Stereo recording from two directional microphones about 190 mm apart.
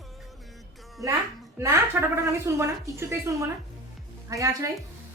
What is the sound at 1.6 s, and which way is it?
A woman's voice, 15° right (ahead or behind).